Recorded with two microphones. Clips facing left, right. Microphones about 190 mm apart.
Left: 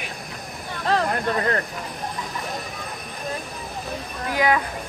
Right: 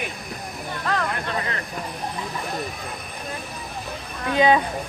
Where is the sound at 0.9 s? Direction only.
30° left (ahead or behind).